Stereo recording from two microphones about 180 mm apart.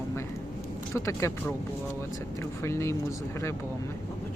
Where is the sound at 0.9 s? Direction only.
15° left (ahead or behind).